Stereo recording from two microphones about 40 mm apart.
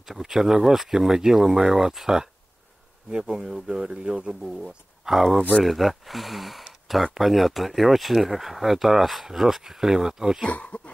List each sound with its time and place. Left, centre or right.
0.0 s speech: centre
10.5 s speech: left